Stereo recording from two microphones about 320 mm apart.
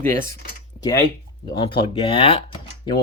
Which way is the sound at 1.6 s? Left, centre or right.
Centre.